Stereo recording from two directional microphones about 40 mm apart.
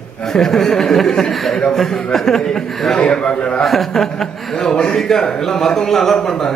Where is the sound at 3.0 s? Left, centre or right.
Left.